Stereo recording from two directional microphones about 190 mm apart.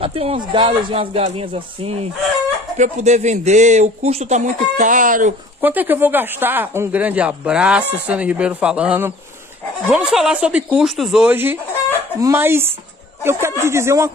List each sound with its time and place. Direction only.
0.0 s speech: 30° right (ahead or behind)
5.6 s speech: 10° right (ahead or behind)